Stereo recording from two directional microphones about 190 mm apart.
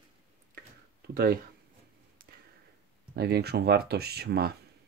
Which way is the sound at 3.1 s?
55° right (ahead or behind).